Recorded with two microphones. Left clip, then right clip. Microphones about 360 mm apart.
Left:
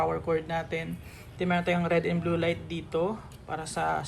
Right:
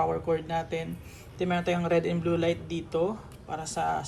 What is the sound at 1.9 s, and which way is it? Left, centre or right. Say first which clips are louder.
A woman's voice: right 1 dB; centre.